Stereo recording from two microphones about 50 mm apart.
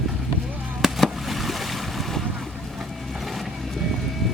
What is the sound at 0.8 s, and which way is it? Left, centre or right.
Boat, centre.